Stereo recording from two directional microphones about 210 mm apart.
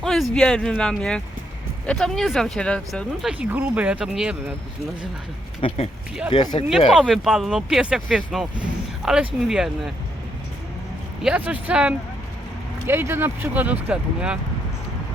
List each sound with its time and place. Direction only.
0.0 s speech: centre (ahead or behind)
5.5 s speech: 25° left (ahead or behind)
6.7 s speech: 5° right (ahead or behind)
11.2 s speech: 5° right (ahead or behind)